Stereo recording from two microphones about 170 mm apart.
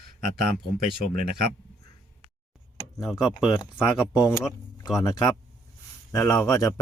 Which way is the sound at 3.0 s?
Centre (ahead or behind).